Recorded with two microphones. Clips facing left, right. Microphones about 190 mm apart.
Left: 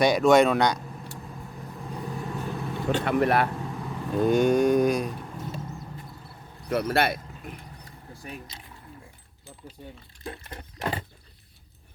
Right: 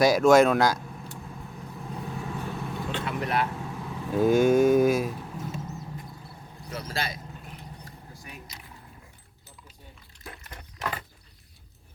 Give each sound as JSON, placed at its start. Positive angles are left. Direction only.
{"t": 0.0, "sound": "speech", "side_deg": 0}
{"t": 1.8, "sound": "vehicle", "side_deg": 0}
{"t": 3.0, "sound": "speech", "side_deg": 60}
{"t": 3.5, "sound": "vehicle", "side_deg": 0}
{"t": 6.7, "sound": "speech", "side_deg": 65}
{"t": 8.1, "sound": "a sound", "side_deg": 30}
{"t": 10.2, "sound": "a sound", "side_deg": 30}